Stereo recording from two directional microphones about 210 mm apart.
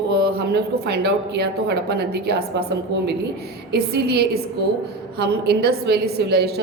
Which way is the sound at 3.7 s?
50° right (ahead or behind).